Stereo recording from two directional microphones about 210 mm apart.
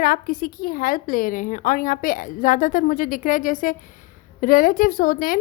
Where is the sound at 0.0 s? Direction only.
40° left (ahead or behind).